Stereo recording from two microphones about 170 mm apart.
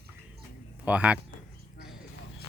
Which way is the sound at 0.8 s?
5° right (ahead or behind).